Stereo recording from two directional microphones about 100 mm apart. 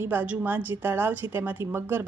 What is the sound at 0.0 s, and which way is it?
A woman's voice, 20° right (ahead or behind).